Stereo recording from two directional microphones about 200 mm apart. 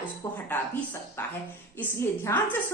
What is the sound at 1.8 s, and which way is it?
Speech, 15° left (ahead or behind).